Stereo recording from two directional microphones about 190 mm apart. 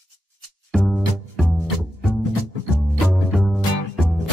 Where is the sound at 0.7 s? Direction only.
Centre (ahead or behind).